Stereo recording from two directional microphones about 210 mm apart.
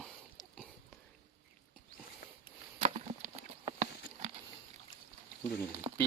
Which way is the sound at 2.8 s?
25° right (ahead or behind).